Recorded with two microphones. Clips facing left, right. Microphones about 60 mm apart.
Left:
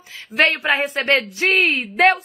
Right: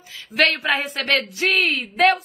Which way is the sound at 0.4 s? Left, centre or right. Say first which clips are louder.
Left 2 dB; left.